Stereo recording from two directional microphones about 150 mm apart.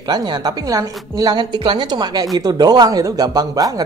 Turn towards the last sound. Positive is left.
turn(degrees=-25)  # may be behind; listen again after turning